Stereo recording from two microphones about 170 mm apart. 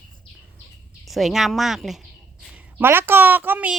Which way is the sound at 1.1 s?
Centre (ahead or behind).